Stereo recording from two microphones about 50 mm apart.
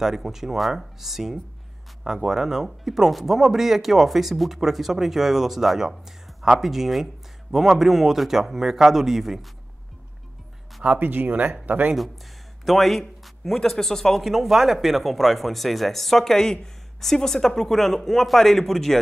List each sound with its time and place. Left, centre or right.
0.0 s speech: centre
10.8 s speech: right
12.6 s speech: centre